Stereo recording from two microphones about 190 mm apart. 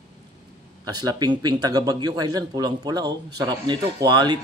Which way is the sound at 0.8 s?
20° right (ahead or behind).